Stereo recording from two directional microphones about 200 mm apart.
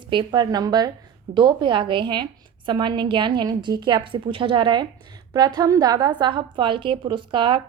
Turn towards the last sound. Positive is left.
turn(degrees=-25)  # may be behind; listen again after turning